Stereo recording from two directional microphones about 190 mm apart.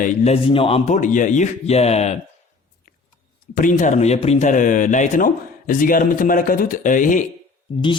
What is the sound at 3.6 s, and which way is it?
Speech, 40° left (ahead or behind).